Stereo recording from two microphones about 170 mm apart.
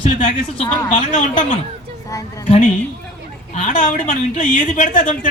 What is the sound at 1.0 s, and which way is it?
Speech, 45° left (ahead or behind).